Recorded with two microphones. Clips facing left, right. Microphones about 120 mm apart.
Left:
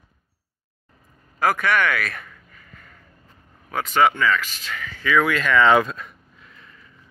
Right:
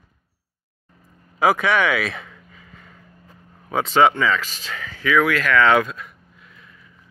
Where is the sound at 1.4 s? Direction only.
5° right (ahead or behind).